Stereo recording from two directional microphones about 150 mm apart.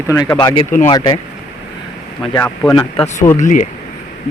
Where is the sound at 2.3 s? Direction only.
15° left (ahead or behind).